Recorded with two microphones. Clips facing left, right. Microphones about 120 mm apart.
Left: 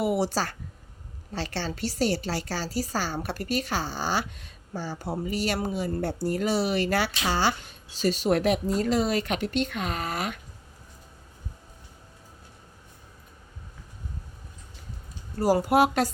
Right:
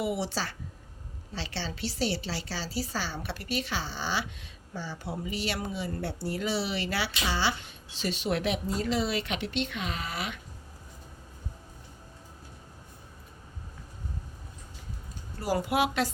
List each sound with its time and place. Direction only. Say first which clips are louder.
0.0 s speech: left 5 dB; 45° left (ahead or behind)
15.4 s speech: left 6 dB; 40° left (ahead or behind)